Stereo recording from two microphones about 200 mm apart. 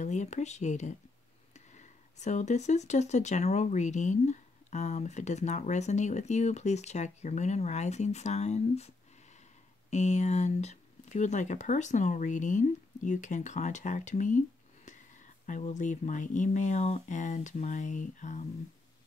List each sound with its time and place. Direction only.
0.0 s speech: 35° left (ahead or behind)
15.4 s speech: 40° left (ahead or behind)